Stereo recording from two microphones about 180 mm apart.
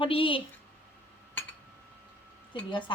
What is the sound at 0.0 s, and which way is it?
Speech, 30° left (ahead or behind).